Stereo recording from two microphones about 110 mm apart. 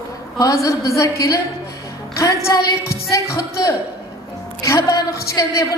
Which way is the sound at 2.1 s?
30° left (ahead or behind).